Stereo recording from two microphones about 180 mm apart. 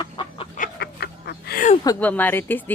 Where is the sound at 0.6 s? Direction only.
65° left (ahead or behind).